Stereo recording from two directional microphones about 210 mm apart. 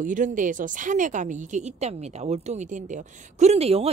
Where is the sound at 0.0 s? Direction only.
40° right (ahead or behind).